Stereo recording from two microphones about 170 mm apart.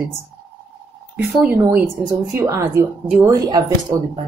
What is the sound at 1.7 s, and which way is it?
A woman's voice, 15° right (ahead or behind).